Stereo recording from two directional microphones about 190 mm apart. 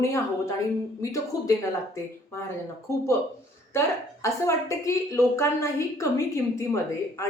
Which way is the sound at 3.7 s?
15° left (ahead or behind).